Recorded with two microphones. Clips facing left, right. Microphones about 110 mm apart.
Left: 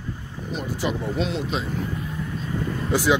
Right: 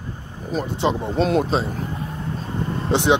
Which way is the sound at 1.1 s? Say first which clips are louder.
Right 7 dB; 40° right (ahead or behind).